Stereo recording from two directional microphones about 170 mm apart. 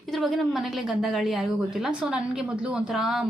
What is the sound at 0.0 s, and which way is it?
A woman's voice, centre (ahead or behind).